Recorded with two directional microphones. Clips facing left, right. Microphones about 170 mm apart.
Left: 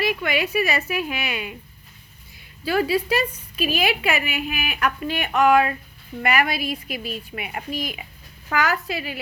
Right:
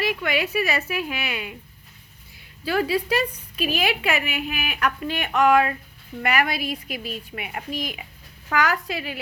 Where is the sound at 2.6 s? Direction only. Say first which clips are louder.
Left 2 dB; 10° left (ahead or behind).